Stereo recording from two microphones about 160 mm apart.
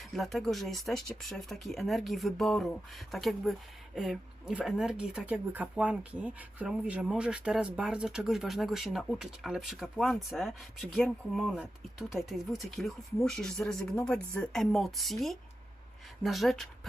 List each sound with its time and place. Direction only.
0.2 s speech: centre (ahead or behind)